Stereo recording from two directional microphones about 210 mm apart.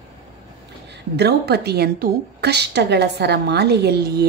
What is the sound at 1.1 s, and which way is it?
Speech, 50° right (ahead or behind).